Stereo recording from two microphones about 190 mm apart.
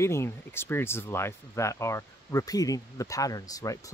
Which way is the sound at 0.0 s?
15° left (ahead or behind).